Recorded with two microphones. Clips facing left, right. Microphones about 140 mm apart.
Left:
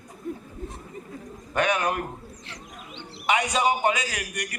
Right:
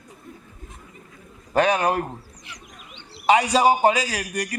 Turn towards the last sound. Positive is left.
turn(degrees=-30)  # may be behind; listen again after turning